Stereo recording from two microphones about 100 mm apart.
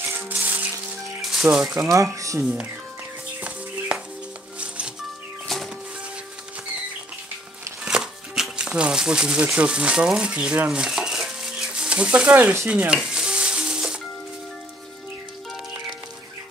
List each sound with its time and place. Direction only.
0.3 s music: 15° right (ahead or behind)
1.2 s speech: 5° right (ahead or behind)
1.9 s speech: 35° right (ahead or behind)
3.3 s music: 15° right (ahead or behind)
5.5 s a sound: 5° left (ahead or behind)
7.8 s speech: 5° right (ahead or behind)
12.6 s stir: 10° right (ahead or behind)